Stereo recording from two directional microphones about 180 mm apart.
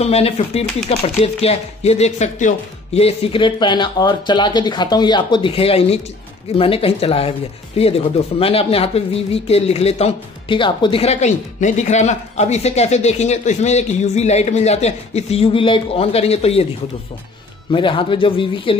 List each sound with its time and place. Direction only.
0.0 s speech: 35° left (ahead or behind)
17.6 s speech: 30° left (ahead or behind)